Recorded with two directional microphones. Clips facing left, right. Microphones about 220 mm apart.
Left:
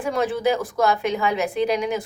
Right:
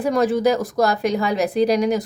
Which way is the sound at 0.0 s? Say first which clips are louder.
Right 4 dB; 40° right (ahead or behind).